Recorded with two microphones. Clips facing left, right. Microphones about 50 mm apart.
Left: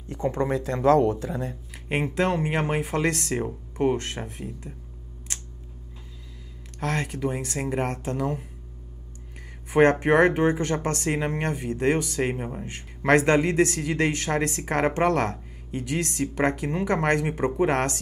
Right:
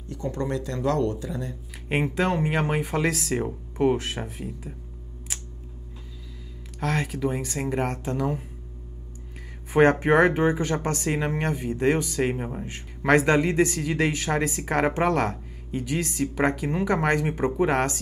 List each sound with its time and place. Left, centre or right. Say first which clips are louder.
0.1 s speech: left 3 dB; left
1.9 s speech: even; centre
6.8 s speech: right 1 dB; centre
9.7 s speech: even; centre